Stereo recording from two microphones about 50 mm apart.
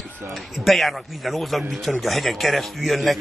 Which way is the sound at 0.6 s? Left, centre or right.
Centre.